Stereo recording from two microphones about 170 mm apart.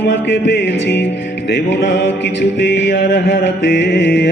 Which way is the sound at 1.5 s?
80° left.